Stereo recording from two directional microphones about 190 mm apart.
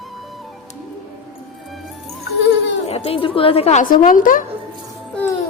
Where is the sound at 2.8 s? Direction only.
30° left (ahead or behind).